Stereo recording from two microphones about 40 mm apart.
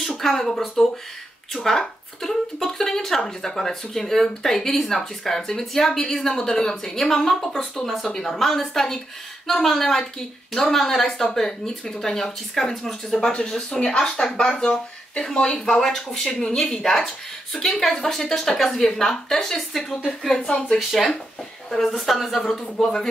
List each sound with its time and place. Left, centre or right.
0.0 s speech: centre
15.8 s speech: centre
16.3 s speech: centre
16.8 s speech: centre
20.9 s speech: centre